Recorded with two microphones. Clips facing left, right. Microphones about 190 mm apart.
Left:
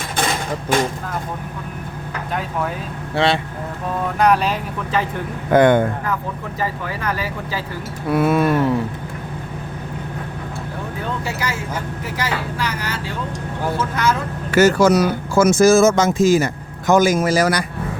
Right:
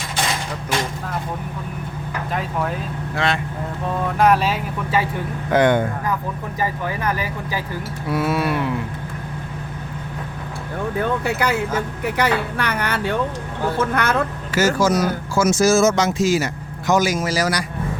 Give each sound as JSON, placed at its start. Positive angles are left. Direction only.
{"t": 2.3, "sound": "speech", "side_deg": 0}
{"t": 3.2, "sound": "speech", "side_deg": 30}
{"t": 4.2, "sound": "speech", "side_deg": 0}
{"t": 5.5, "sound": "speech", "side_deg": 50}
{"t": 6.6, "sound": "speech", "side_deg": -15}
{"t": 8.1, "sound": "speech", "side_deg": 55}
{"t": 11.3, "sound": "speech", "side_deg": -60}
{"t": 14.5, "sound": "speech", "side_deg": 60}